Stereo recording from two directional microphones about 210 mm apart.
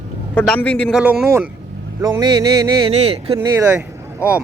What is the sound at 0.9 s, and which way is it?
Speech, 5° right (ahead or behind).